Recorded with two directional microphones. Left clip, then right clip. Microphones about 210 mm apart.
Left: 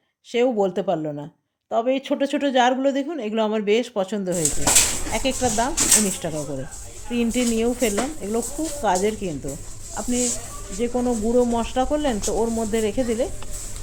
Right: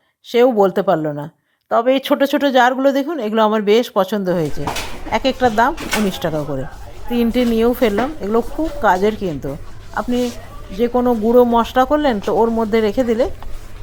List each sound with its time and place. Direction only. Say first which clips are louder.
0.3 s speech: right 8 dB; 20° right (ahead or behind)